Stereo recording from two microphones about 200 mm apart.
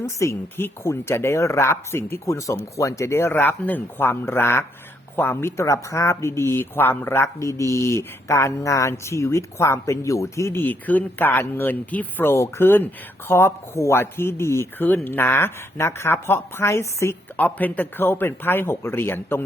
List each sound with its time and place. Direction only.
0.0 s speech: 15° left (ahead or behind)